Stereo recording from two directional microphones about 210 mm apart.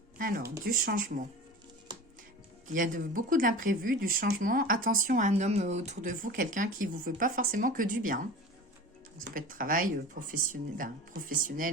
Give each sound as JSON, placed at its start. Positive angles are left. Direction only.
{"t": 0.2, "sound": "a sound", "side_deg": -45}
{"t": 0.6, "sound": "speech", "side_deg": -45}
{"t": 2.7, "sound": "speech", "side_deg": -40}
{"t": 9.3, "sound": "speech", "side_deg": -40}